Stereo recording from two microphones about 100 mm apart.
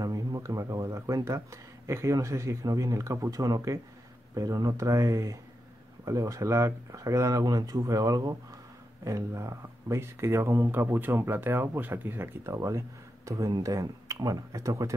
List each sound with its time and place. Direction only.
0.0 s speech: 35° right (ahead or behind)
12.5 s speech: 35° right (ahead or behind)